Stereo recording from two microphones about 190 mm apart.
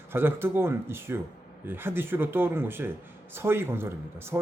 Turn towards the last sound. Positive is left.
turn(degrees=-10)  # may be behind; listen again after turning